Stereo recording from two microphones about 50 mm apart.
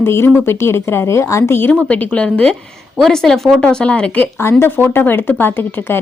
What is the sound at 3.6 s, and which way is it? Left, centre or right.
Speech, left.